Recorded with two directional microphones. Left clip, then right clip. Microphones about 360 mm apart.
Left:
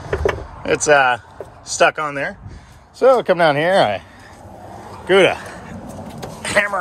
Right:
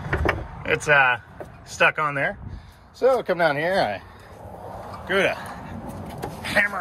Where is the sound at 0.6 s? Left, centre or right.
Centre.